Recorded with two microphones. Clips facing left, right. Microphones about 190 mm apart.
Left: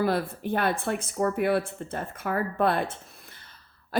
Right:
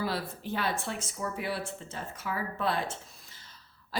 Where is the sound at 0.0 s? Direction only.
55° left (ahead or behind).